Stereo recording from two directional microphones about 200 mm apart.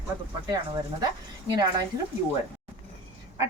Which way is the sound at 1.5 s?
20° right (ahead or behind).